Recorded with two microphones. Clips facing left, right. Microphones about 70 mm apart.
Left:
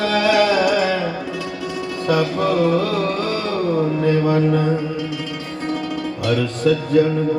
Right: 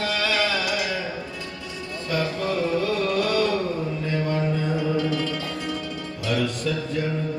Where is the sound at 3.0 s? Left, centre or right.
Left.